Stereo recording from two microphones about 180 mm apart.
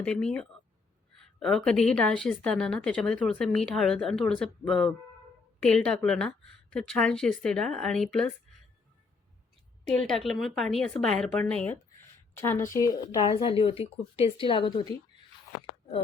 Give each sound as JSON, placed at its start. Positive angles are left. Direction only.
{"t": 0.0, "sound": "speech", "side_deg": 5}
{"t": 1.5, "sound": "speech", "side_deg": 5}
{"t": 9.8, "sound": "a woman's voice", "side_deg": 5}
{"t": 13.2, "sound": "speech", "side_deg": 30}